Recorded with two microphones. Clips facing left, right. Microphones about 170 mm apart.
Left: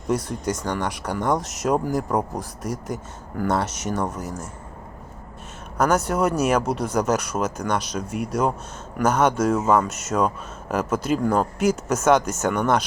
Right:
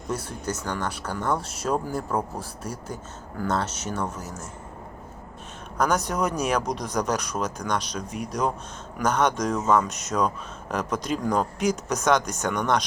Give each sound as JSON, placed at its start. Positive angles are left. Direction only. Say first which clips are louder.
{"t": 0.6, "sound": "speech", "louder": "left 4 dB", "side_deg": 10}
{"t": 2.6, "sound": "speech", "louder": "left 7 dB", "side_deg": 80}
{"t": 3.4, "sound": "speech", "louder": "left 3 dB", "side_deg": 10}
{"t": 5.7, "sound": "speech", "louder": "left 4 dB", "side_deg": 10}